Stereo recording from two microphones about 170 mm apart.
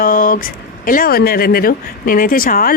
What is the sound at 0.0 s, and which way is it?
Speech, 55° left (ahead or behind).